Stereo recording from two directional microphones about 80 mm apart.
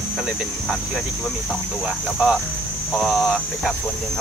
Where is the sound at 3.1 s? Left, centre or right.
Centre.